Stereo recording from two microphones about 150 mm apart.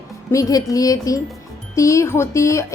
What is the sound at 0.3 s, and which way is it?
A woman's voice, 25° left (ahead or behind).